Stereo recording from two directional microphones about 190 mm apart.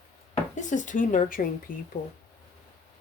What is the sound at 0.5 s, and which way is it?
Speech, 40° left (ahead or behind).